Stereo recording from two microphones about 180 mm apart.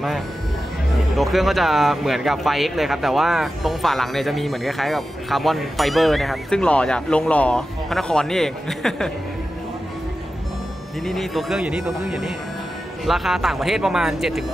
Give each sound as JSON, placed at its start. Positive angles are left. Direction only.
{"t": 1.1, "sound": "speech", "side_deg": 0}
{"t": 11.1, "sound": "speech", "side_deg": 0}